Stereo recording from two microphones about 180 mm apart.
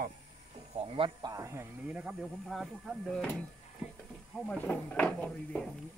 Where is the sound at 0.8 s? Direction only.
30° right (ahead or behind); by 3.3 s centre (ahead or behind).